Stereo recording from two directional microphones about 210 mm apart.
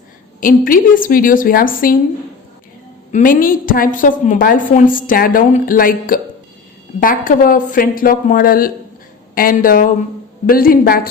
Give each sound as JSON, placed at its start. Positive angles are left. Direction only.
{"t": 0.3, "sound": "a woman's voice", "side_deg": 40}
{"t": 3.1, "sound": "a woman's voice", "side_deg": 40}